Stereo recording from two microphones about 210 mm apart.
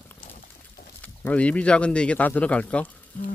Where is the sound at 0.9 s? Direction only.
5° left (ahead or behind).